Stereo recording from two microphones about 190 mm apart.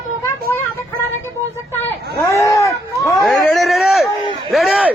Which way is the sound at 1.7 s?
10° left (ahead or behind).